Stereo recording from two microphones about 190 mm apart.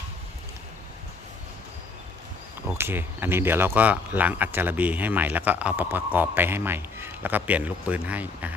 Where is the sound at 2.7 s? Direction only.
10° right (ahead or behind).